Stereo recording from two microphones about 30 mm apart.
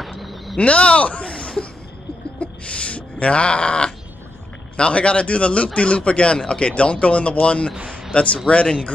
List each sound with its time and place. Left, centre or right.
0.0 s a sound: centre
0.6 s speech: left
1.3 s cough: centre
2.4 s speech: left
6.7 s speech: left